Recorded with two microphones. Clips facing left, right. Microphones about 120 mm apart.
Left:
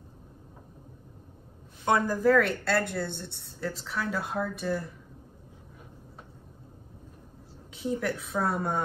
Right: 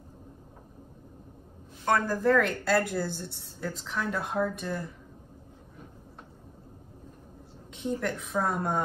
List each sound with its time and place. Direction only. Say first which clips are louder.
1.9 s speech: left 1 dB; 20° left (ahead or behind)
2.1 s a woman's voice: left 1 dB; 5° left (ahead or behind)
7.7 s a woman's voice: left 1 dB; 5° left (ahead or behind)